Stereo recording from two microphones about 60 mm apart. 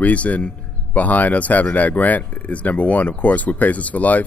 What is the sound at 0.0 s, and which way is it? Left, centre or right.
Speech, left.